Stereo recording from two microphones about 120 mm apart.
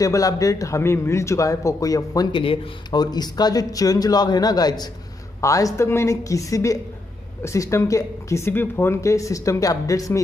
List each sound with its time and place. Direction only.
0.0 s speech: 30° left (ahead or behind)
2.3 s speech: 50° left (ahead or behind)
2.9 s a man's voice: 35° left (ahead or behind)